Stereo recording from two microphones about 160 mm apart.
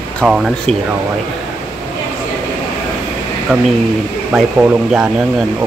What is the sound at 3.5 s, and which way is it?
Speech, 5° right (ahead or behind).